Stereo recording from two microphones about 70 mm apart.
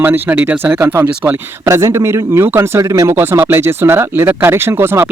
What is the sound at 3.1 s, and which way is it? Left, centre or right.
Speech, right.